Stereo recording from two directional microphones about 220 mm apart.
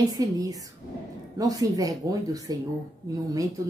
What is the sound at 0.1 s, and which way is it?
Speech, 15° right (ahead or behind).